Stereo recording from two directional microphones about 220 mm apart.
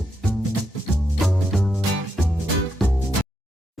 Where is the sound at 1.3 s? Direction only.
Centre (ahead or behind).